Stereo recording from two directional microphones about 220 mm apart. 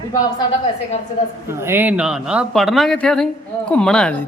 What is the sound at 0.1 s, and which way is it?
Speech, 20° left (ahead or behind).